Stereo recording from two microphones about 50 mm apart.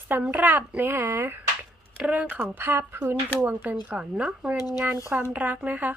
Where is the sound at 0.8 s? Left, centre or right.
Right.